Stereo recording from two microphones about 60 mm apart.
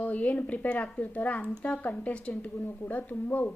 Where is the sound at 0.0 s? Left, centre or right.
Left.